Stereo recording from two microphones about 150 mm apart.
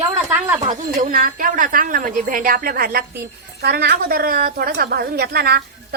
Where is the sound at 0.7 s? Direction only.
65° right (ahead or behind).